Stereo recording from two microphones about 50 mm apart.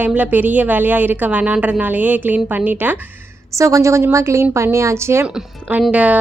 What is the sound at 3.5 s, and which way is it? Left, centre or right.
Speech, right.